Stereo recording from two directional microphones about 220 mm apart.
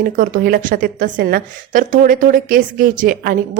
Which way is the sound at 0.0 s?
40° right (ahead or behind).